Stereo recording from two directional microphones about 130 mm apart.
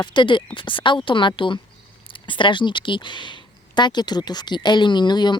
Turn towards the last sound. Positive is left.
turn(degrees=35)  # may be behind; listen again after turning